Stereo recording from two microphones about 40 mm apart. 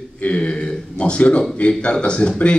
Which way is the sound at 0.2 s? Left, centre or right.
Left.